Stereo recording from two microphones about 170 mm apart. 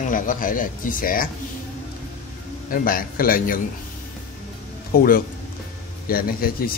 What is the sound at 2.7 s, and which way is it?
Speech, 60° left (ahead or behind).